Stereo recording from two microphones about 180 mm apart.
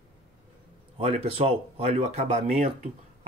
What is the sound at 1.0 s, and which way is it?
Speech, 30° right (ahead or behind).